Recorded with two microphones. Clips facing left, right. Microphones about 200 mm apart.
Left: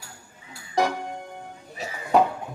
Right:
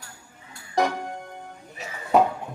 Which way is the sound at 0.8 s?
Centre (ahead or behind).